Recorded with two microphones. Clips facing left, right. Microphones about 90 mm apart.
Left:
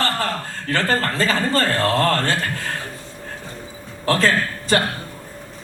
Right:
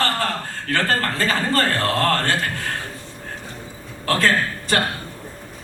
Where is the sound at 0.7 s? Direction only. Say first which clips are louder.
Left 1 dB; 20° left (ahead or behind).